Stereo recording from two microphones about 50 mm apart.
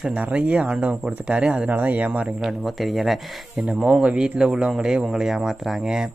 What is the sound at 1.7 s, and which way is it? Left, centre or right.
Speech, right.